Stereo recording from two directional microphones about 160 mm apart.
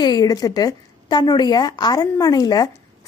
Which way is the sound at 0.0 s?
25° left (ahead or behind).